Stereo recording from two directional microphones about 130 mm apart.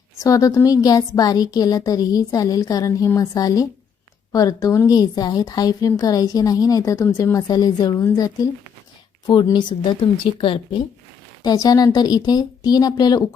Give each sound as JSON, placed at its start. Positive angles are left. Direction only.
{"t": 0.2, "sound": "a woman's voice", "side_deg": 25}
{"t": 11.4, "sound": "a woman's voice", "side_deg": 30}